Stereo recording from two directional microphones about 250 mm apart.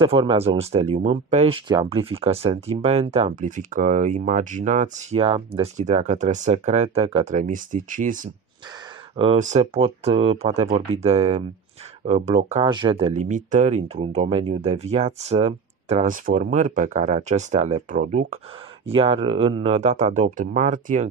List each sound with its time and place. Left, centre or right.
0.0 s speech: centre
18.9 s speech: right